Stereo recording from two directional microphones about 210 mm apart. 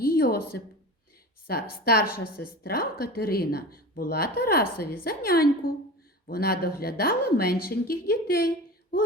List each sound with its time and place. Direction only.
0.0 s a woman's voice: 45° left (ahead or behind)